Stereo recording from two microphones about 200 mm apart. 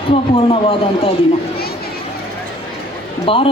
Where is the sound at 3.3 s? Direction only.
25° left (ahead or behind).